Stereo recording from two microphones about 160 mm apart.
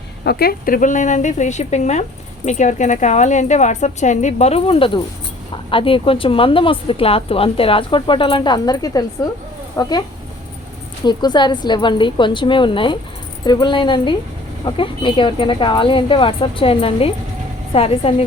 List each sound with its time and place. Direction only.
0.3 s a woman's voice: 70° left (ahead or behind); by 9.9 s 20° left (ahead or behind)
11.0 s a woman's voice: 25° left (ahead or behind)